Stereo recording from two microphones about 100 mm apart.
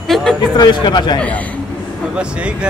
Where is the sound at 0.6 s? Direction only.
50° left (ahead or behind).